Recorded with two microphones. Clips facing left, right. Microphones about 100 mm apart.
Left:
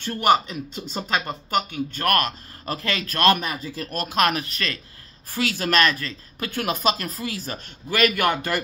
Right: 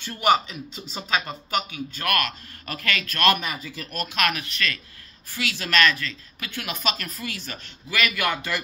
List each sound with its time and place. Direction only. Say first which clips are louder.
0.0 s a woman's voice: left 2 dB; 50° left (ahead or behind)